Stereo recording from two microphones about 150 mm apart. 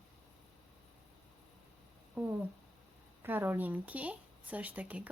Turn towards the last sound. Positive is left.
turn(degrees=-10)  # may be behind; listen again after turning